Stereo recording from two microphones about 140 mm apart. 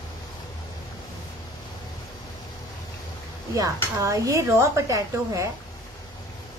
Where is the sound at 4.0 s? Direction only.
20° right (ahead or behind).